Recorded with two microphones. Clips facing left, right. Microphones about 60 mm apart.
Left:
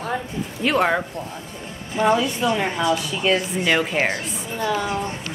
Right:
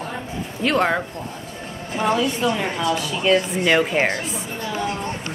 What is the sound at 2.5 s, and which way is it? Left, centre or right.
Speech, centre.